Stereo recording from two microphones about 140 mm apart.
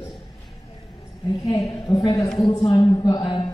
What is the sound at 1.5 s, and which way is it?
A man's voice, 25° left (ahead or behind).